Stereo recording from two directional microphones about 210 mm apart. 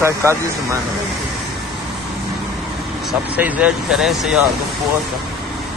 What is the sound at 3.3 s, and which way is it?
Speech, 5° right (ahead or behind).